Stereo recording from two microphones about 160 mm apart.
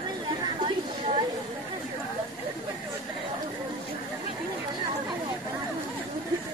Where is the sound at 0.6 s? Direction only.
30° right (ahead or behind).